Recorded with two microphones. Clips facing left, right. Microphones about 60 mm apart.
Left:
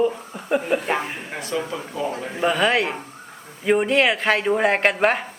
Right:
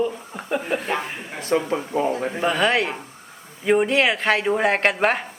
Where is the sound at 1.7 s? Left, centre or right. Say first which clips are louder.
Right 5 dB; right.